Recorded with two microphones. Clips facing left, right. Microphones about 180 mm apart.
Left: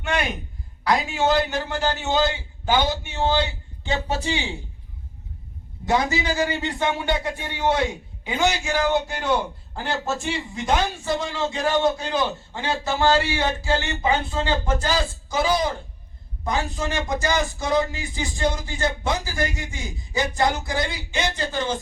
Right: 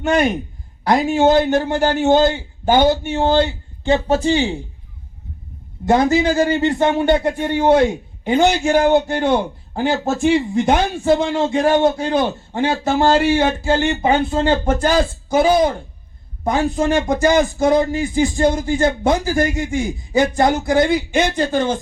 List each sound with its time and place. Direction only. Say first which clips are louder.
0.0 s a man's voice: right 9 dB; 40° right (ahead or behind)
5.9 s a man's voice: right 8 dB; 50° right (ahead or behind)